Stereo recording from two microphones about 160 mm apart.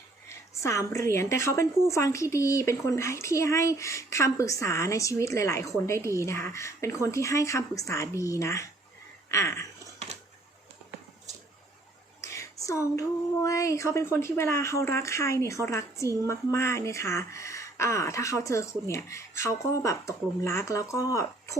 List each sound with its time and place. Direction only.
0.3 s a woman's voice: 20° left (ahead or behind)
12.2 s speech: 20° left (ahead or behind)